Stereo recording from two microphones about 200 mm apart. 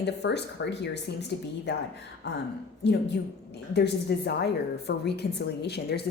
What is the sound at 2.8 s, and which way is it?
A woman's voice, 55° left (ahead or behind).